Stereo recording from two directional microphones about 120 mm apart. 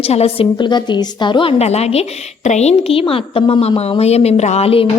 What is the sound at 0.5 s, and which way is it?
A woman's voice, 40° left (ahead or behind).